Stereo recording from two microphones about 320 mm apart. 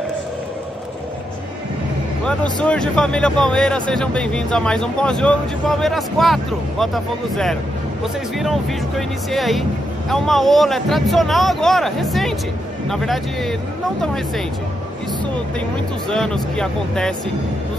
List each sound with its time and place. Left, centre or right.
2.2 s speech: centre
16.1 s speech: centre